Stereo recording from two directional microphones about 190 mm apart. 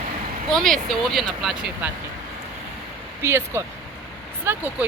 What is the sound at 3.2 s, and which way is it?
Speech, 15° right (ahead or behind).